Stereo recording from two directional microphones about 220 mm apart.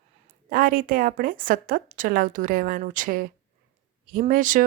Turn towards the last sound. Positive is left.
turn(degrees=-35)  # may be behind; listen again after turning